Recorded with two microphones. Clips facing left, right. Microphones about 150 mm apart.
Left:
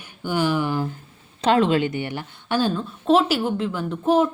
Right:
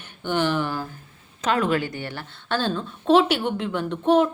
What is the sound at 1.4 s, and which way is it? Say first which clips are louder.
Speech: left 4 dB; 25° left (ahead or behind).